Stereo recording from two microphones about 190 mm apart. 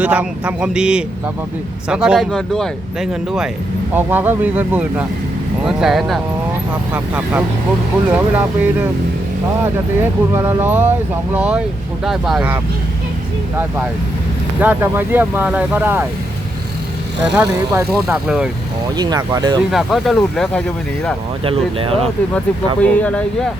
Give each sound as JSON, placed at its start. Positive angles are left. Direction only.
{"t": 0.0, "sound": "speech", "side_deg": -5}
{"t": 10.0, "sound": "speech", "side_deg": -10}
{"t": 14.6, "sound": "speech", "side_deg": -10}
{"t": 17.3, "sound": "speech", "side_deg": -10}
{"t": 18.9, "sound": "speech", "side_deg": -20}
{"t": 19.7, "sound": "speech", "side_deg": 0}
{"t": 21.4, "sound": "speech", "side_deg": -30}
{"t": 22.8, "sound": "speech", "side_deg": 5}